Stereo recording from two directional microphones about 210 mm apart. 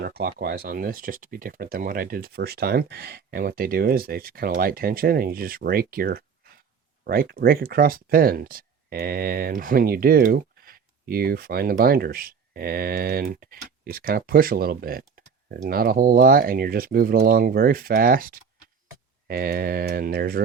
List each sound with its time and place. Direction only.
0.0 s speech: 45° right (ahead or behind)